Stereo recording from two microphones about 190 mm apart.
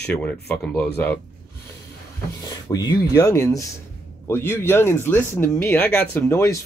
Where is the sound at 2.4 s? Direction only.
20° left (ahead or behind).